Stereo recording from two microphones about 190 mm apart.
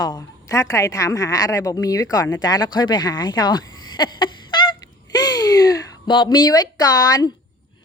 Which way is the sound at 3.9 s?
25° left (ahead or behind).